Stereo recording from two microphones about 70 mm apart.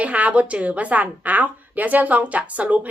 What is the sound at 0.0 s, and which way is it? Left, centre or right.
A woman's voice, right.